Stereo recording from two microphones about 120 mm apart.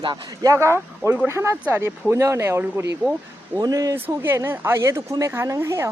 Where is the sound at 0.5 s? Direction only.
25° right (ahead or behind).